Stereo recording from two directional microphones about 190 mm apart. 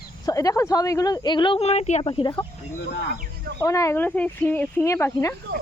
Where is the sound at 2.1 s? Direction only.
25° left (ahead or behind).